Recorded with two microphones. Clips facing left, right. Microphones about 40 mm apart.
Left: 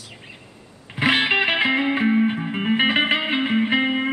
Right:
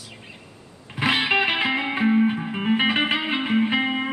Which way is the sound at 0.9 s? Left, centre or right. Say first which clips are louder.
Left 2 dB; centre.